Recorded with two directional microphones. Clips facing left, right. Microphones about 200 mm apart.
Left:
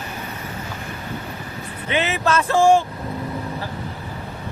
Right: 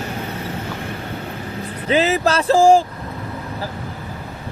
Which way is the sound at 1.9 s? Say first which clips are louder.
Right 4 dB; 35° right (ahead or behind).